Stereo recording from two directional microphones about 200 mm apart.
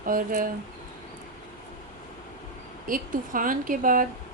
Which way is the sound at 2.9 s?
45° right (ahead or behind).